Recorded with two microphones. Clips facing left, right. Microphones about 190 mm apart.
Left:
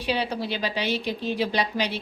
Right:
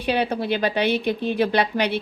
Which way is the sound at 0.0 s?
55° right (ahead or behind).